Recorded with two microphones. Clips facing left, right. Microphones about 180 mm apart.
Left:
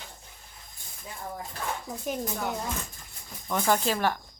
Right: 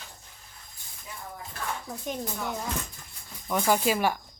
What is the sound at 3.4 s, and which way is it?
Speech, 5° right (ahead or behind).